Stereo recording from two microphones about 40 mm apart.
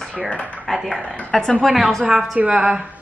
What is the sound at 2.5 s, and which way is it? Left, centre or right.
Speech, right.